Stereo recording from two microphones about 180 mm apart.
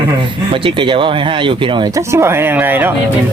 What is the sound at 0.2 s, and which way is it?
Speech, 30° right (ahead or behind).